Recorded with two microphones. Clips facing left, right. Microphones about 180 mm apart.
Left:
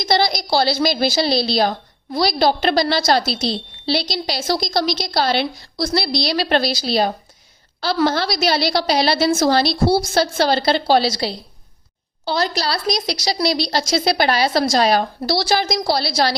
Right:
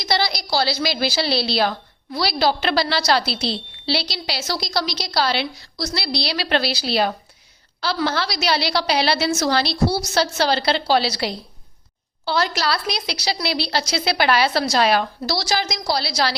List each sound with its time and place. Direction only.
0.0 s a woman's voice: 50° left (ahead or behind)